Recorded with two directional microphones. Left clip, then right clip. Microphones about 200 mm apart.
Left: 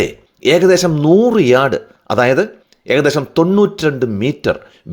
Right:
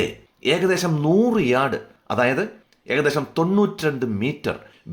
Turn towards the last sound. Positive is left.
turn(degrees=30)  # may be behind; listen again after turning